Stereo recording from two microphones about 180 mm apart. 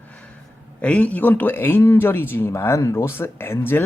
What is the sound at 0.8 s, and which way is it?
Speech, 10° left (ahead or behind).